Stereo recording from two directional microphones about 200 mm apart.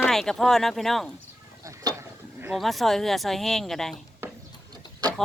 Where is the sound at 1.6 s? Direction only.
15° right (ahead or behind).